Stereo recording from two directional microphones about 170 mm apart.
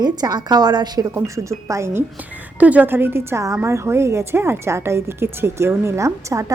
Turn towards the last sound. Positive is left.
turn(degrees=-20)  # may be behind; listen again after turning